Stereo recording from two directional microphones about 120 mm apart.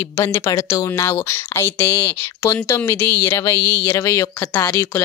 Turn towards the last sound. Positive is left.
turn(degrees=30)  # may be behind; listen again after turning